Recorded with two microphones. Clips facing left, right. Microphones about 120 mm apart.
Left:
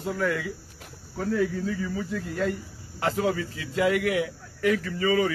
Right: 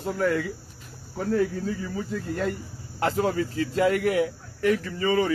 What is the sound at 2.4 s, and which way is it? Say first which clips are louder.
Speech: left 1 dB; 45° right (ahead or behind).